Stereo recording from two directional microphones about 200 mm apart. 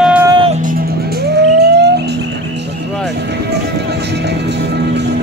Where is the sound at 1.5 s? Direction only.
55° right (ahead or behind).